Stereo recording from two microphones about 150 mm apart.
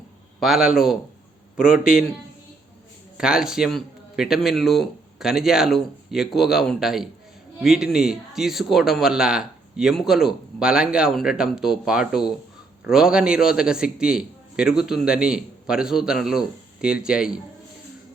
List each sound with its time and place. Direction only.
0.3 s a man's voice: centre (ahead or behind)
3.2 s a man's voice: 5° right (ahead or behind)